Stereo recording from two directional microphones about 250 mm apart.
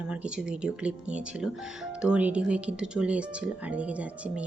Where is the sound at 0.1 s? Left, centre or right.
Centre.